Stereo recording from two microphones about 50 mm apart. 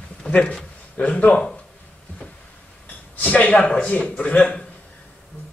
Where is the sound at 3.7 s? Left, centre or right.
Left.